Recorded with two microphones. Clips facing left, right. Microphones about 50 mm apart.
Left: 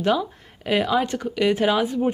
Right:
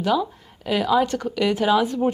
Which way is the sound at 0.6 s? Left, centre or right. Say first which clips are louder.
Right 1 dB; left.